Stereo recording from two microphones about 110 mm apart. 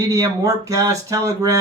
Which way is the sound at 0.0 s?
30° right (ahead or behind).